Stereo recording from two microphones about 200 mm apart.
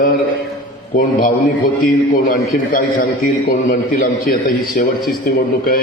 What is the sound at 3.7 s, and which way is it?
A man's voice, 45° left (ahead or behind).